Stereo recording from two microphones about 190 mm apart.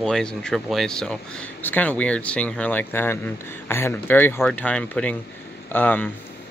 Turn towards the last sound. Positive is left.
turn(degrees=10)  # may be behind; listen again after turning